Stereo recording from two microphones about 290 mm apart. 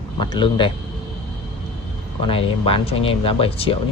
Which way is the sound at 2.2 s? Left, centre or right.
Centre.